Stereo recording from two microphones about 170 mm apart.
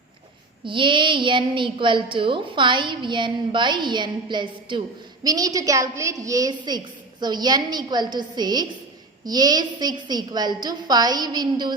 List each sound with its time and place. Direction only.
0.6 s a woman's voice: 30° right (ahead or behind)